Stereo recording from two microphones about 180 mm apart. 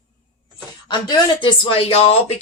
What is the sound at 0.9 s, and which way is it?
Speech, 20° left (ahead or behind).